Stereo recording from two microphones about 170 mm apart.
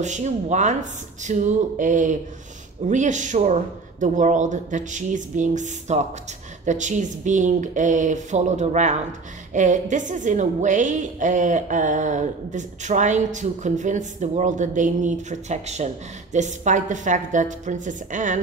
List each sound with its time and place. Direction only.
0.0 s a woman's voice: 45° right (ahead or behind)